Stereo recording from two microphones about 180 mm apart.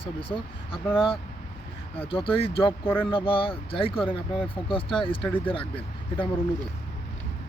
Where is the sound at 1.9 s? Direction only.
30° left (ahead or behind).